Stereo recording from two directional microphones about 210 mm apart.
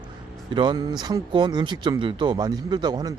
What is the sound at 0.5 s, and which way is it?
Speech, 20° right (ahead or behind).